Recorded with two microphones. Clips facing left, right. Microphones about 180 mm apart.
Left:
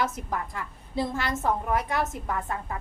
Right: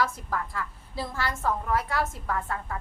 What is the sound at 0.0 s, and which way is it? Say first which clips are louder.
A woman's voice: even; 20° left (ahead or behind).